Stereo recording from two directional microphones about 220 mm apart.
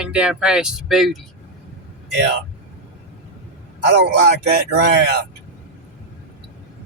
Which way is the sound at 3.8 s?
50° right (ahead or behind).